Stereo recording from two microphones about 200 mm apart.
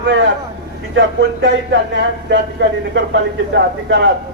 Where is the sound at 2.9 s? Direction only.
65° right (ahead or behind).